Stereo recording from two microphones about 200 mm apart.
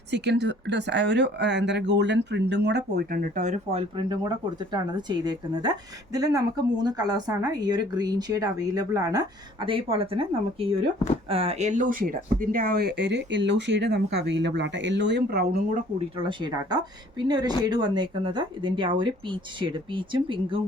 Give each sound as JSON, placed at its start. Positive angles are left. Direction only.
{"t": 0.1, "sound": "speech", "side_deg": -60}
{"t": 16.1, "sound": "speech", "side_deg": -25}